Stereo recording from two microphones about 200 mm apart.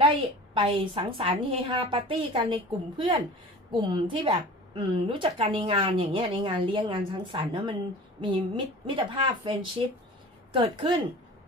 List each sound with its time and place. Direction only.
0.0 s a woman's voice: 25° right (ahead or behind)
10.5 s a woman's voice: 25° right (ahead or behind)